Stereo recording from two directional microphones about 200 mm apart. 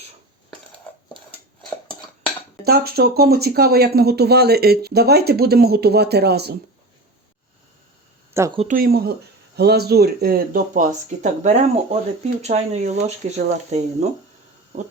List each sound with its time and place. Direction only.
2.6 s speech: 50° right (ahead or behind)
8.3 s a sound: 15° right (ahead or behind)
8.5 s speech: 40° right (ahead or behind)